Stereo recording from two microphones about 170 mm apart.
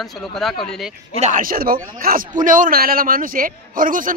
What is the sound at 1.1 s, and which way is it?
A man's voice, 45° right (ahead or behind).